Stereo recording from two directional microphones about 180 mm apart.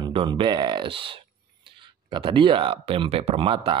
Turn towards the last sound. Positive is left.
turn(degrees=-30)  # may be behind; listen again after turning